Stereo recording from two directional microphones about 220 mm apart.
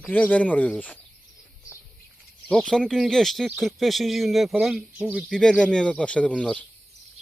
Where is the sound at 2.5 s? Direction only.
5° left (ahead or behind).